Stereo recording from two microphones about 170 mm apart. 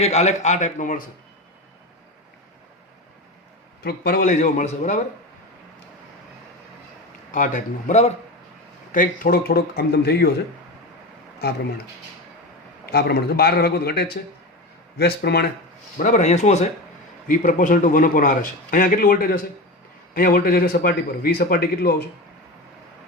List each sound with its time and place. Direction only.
0.0 s a man's voice: 40° left (ahead or behind)
3.8 s a man's voice: 60° left (ahead or behind)
7.3 s a man's voice: 50° left (ahead or behind); by 10.3 s 70° left (ahead or behind)
12.8 s a man's voice: 70° left (ahead or behind)
16.0 s a man's voice: 45° left (ahead or behind)
17.2 s a man's voice: 50° left (ahead or behind)